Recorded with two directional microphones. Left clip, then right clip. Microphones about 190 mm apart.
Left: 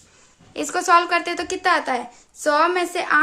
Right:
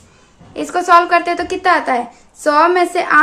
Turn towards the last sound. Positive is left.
turn(degrees=15)  # may be behind; listen again after turning